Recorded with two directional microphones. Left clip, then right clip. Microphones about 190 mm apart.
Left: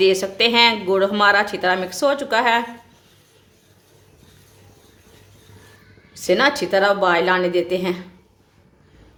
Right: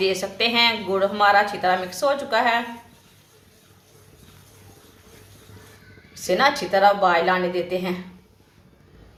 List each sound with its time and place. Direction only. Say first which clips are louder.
0.0 s speech: left 5 dB; 60° left (ahead or behind)
6.1 s speech: left 2 dB; 55° left (ahead or behind)